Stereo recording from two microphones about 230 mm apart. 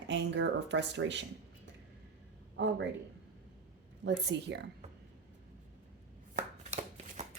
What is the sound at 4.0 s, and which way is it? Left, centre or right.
Speech, right.